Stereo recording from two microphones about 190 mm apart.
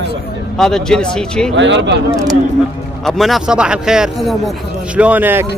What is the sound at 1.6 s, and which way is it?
Speech, 70° right (ahead or behind).